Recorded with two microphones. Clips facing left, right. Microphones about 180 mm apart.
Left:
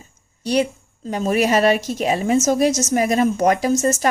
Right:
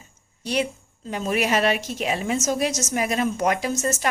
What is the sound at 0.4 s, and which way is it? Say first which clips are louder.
A woman's voice: left 6 dB; 40° left (ahead or behind).